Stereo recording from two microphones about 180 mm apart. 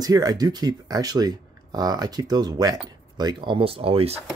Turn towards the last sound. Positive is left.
turn(degrees=-35)  # may be behind; listen again after turning